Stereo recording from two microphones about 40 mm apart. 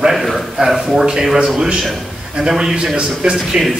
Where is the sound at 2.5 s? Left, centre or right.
Centre.